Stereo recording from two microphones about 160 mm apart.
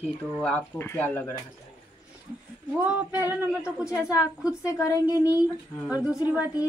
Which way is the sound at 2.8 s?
10° right (ahead or behind).